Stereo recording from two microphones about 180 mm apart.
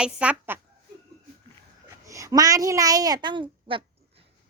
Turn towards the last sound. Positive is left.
turn(degrees=-30)  # may be behind; listen again after turning